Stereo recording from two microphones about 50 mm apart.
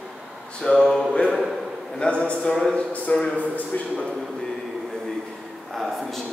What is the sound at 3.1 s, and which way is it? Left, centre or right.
Speech, left.